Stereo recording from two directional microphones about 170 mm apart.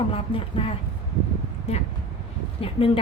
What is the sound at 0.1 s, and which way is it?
A woman's voice, 30° left (ahead or behind).